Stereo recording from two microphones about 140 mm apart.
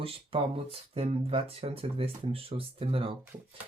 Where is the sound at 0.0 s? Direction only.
45° right (ahead or behind).